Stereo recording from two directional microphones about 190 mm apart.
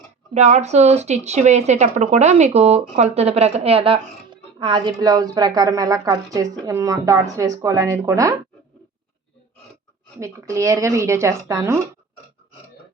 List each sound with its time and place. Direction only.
0.3 s a woman's voice: 35° right (ahead or behind); by 8.4 s 15° right (ahead or behind)
10.2 s a woman's voice: 15° right (ahead or behind)